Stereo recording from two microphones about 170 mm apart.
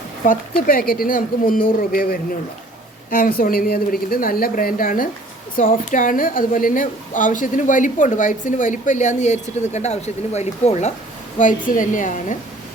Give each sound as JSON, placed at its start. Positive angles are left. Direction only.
{"t": 0.3, "sound": "a woman's voice", "side_deg": 55}